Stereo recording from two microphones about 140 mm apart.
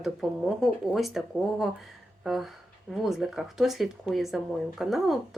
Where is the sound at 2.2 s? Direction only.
Centre (ahead or behind).